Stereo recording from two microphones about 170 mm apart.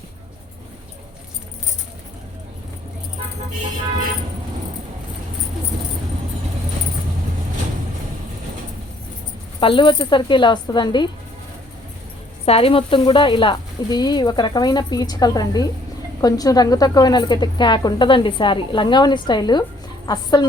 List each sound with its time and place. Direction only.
9.6 s a woman's voice: 30° left (ahead or behind)
12.5 s a woman's voice: 35° left (ahead or behind)